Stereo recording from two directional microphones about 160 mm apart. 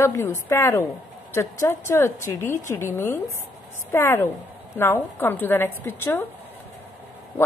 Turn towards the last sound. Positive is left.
turn(degrees=15)  # may be behind; listen again after turning